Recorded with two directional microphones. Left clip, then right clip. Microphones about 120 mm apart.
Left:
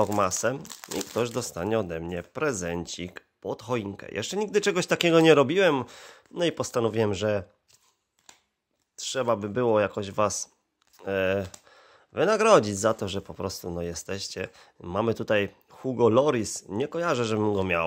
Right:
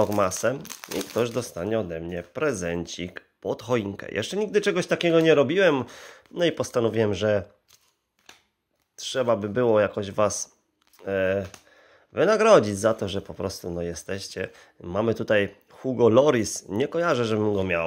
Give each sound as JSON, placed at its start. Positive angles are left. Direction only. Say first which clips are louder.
{"t": 0.0, "sound": "speech", "louder": "right 2 dB", "side_deg": 25}
{"t": 2.3, "sound": "speech", "louder": "right 3 dB", "side_deg": 30}
{"t": 5.6, "sound": "speech", "louder": "right 2 dB", "side_deg": 30}
{"t": 8.9, "sound": "speech", "louder": "right 3 dB", "side_deg": 25}
{"t": 11.0, "sound": "speech", "louder": "right 2 dB", "side_deg": 35}
{"t": 11.7, "sound": "a sound", "louder": "even", "side_deg": 45}
{"t": 12.1, "sound": "speech", "louder": "right 2 dB", "side_deg": 25}